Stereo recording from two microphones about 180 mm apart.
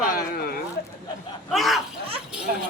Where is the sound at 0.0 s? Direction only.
55° left (ahead or behind).